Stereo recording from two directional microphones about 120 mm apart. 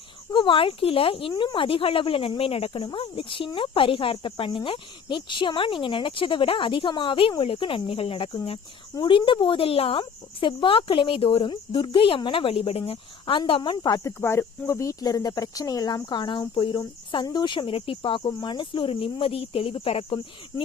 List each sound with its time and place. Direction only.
0.3 s speech: 45° left (ahead or behind)
14.0 s speech: 20° left (ahead or behind); by 20.2 s 50° left (ahead or behind)